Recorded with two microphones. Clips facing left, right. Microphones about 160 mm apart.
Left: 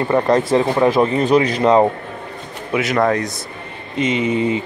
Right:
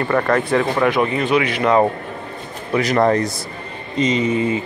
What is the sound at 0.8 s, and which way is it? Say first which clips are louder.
Speech: left 3 dB; 35° left (ahead or behind).